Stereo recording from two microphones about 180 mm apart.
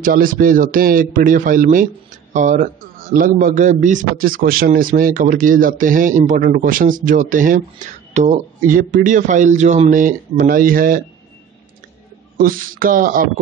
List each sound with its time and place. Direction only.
0.0 s a man's voice: 50° right (ahead or behind)
12.4 s a man's voice: 50° right (ahead or behind)